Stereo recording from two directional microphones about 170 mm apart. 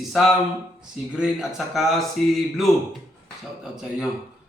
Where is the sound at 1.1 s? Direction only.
5° right (ahead or behind).